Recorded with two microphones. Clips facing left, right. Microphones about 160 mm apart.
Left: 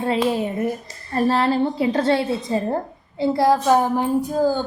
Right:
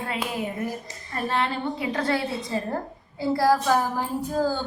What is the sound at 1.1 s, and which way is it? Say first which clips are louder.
A woman's voice: left 8 dB; 35° left (ahead or behind).